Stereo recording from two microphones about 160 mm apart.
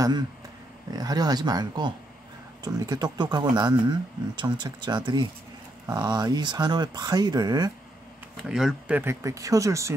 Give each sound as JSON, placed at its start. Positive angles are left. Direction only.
{"t": 0.9, "sound": "speech", "side_deg": -25}
{"t": 8.4, "sound": "speech", "side_deg": -5}